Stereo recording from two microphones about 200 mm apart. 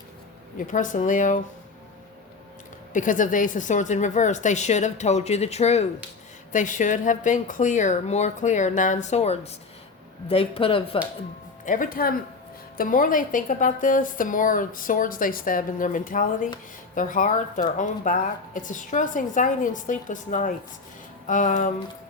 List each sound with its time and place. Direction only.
0.7 s a woman's voice: 40° left (ahead or behind)
2.9 s a woman's voice: 40° left (ahead or behind)
11.6 s a woman's voice: 40° left (ahead or behind)